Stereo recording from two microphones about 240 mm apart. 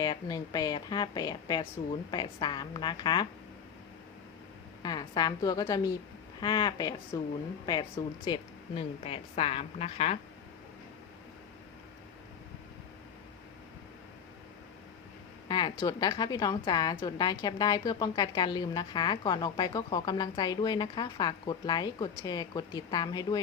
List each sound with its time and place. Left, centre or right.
0.0 s a woman's voice: centre
4.8 s a woman's voice: centre
15.4 s a woman's voice: centre